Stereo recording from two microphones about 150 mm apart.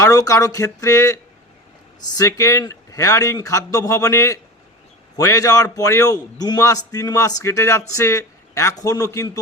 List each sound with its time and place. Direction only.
0.0 s a man's voice: 20° left (ahead or behind)